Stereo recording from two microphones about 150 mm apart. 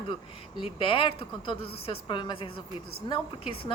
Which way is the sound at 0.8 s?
35° left (ahead or behind).